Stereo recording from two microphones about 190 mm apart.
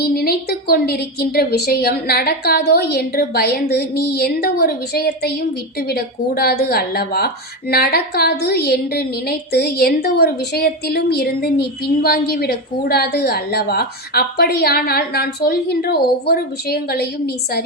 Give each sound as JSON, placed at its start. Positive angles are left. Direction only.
{"t": 0.0, "sound": "a woman's voice", "side_deg": 55}